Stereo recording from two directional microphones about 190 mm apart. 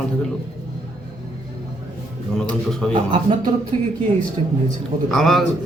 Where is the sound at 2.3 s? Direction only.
5° left (ahead or behind).